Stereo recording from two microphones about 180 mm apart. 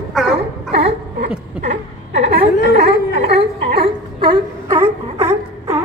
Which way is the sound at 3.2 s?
70° right (ahead or behind).